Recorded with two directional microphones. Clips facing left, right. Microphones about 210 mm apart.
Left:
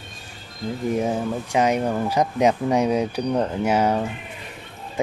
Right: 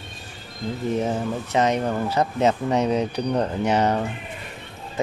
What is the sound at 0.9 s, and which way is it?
Speech, 10° left (ahead or behind).